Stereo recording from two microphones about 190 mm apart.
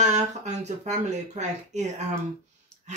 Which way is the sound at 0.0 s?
40° right (ahead or behind).